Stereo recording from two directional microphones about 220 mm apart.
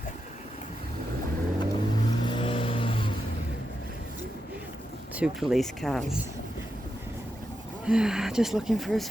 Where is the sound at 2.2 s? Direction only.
25° left (ahead or behind).